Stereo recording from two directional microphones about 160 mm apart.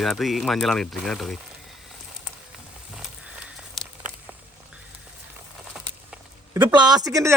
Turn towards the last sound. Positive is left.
turn(degrees=-20)  # may be behind; listen again after turning